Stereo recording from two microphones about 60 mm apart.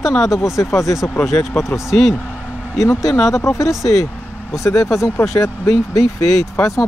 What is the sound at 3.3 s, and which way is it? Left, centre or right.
Speech, left.